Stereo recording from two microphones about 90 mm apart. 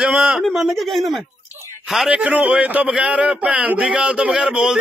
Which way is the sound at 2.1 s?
15° right (ahead or behind).